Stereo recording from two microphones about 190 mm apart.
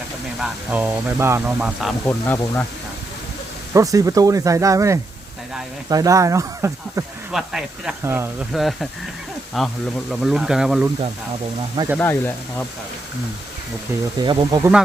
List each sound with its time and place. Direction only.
0.3 s speech: 5° right (ahead or behind)
2.0 s speech: 10° left (ahead or behind)
3.8 s speech: 15° right (ahead or behind)
8.5 s speech: centre (ahead or behind)
11.9 s speech: 10° left (ahead or behind)
14.2 s speech: 25° right (ahead or behind)